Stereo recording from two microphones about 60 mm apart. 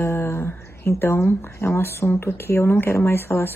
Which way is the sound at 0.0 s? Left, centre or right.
Left.